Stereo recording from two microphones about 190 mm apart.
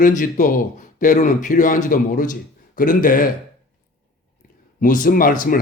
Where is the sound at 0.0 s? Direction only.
45° left (ahead or behind).